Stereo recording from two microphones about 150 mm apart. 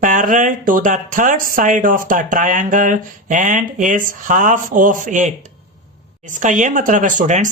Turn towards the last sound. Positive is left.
turn(degrees=-55)  # may be behind; listen again after turning